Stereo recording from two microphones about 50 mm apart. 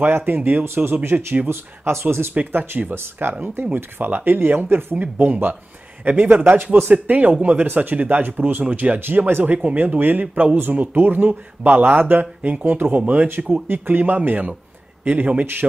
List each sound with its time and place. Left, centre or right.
0.0 s speech: right
0.8 s speech: right
1.1 s speech: right
1.5 s speech: right
2.5 s speech: right
5.2 s speech: right
13.5 s a man's voice: right